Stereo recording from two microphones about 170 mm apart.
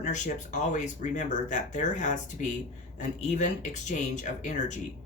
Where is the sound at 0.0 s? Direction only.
45° left (ahead or behind).